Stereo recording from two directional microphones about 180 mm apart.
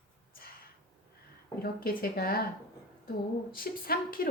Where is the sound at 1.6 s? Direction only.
55° left (ahead or behind).